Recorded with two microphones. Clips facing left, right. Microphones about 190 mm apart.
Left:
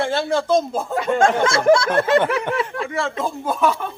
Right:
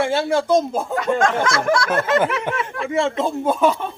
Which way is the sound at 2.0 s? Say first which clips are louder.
Left 2 dB; 30° left (ahead or behind).